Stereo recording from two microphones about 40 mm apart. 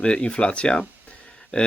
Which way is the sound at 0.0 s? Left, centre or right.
Left.